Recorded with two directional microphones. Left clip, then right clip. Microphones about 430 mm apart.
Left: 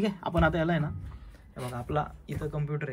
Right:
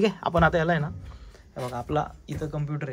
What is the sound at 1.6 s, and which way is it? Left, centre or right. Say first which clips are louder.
Speech: right 4 dB; centre.